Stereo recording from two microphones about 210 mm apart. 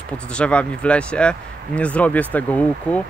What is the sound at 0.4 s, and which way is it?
Speech, 5° left (ahead or behind).